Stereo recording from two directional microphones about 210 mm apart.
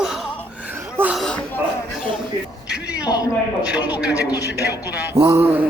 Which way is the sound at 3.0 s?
15° left (ahead or behind).